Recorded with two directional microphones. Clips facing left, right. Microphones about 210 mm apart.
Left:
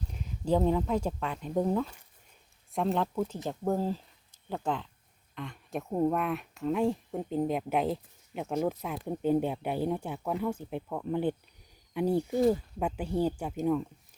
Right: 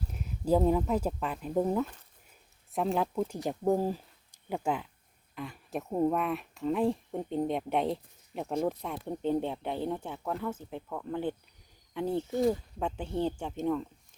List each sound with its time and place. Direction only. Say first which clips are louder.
0.1 s speech: right 1 dB; 5° right (ahead or behind)